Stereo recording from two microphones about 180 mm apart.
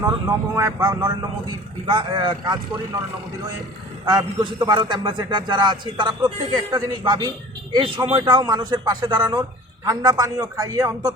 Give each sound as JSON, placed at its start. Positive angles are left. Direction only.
{"t": 0.3, "sound": "a man's voice", "side_deg": -20}
{"t": 4.0, "sound": "a man's voice", "side_deg": -20}